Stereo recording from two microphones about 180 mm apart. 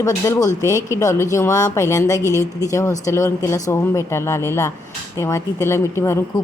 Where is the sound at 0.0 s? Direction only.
20° left (ahead or behind).